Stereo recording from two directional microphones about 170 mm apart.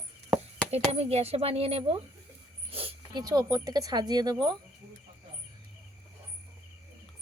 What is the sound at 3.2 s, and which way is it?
Speech, 20° right (ahead or behind).